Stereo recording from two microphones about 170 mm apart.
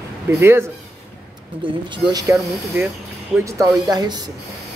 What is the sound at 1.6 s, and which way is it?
Speech, 25° right (ahead or behind).